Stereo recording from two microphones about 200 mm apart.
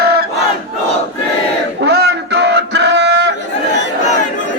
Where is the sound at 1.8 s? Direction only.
55° right (ahead or behind).